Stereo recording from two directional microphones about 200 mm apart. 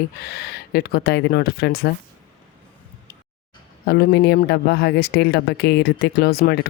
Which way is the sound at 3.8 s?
55° left (ahead or behind).